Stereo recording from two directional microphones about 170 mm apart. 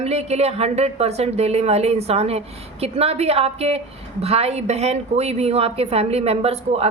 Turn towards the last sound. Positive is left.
turn(degrees=-35)  # may be behind; listen again after turning